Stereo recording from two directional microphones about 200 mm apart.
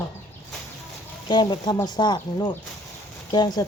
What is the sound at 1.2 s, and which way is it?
Speech, 25° left (ahead or behind).